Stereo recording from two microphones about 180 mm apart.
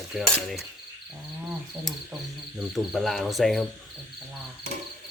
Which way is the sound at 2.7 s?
Centre (ahead or behind).